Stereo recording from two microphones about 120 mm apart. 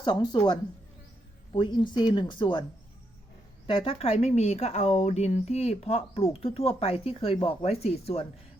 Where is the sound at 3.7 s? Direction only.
45° left (ahead or behind).